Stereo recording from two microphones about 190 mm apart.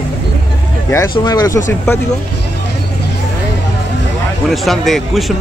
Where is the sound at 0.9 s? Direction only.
20° left (ahead or behind).